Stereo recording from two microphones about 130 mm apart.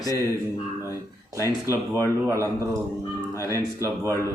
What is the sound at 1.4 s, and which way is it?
Speech, 20° right (ahead or behind).